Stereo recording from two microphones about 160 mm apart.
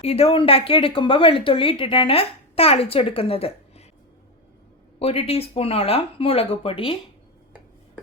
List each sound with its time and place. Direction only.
0.0 s a woman's voice: 40° left (ahead or behind)
4.9 s speech: 40° left (ahead or behind)